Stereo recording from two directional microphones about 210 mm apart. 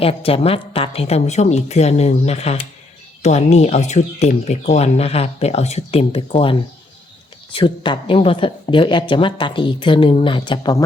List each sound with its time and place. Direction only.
0.0 s a woman's voice: 25° left (ahead or behind)